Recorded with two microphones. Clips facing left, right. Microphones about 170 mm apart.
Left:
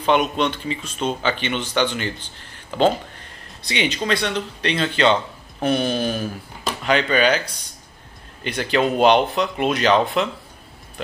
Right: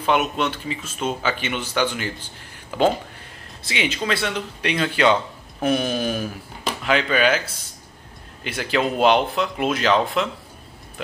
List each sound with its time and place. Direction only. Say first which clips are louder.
0.0 s speech: left 2 dB; 5° right (ahead or behind)